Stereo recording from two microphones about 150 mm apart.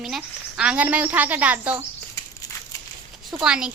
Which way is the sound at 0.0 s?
5° right (ahead or behind).